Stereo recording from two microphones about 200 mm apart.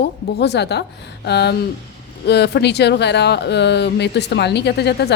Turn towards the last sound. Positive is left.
turn(degrees=55)  # may be behind; listen again after turning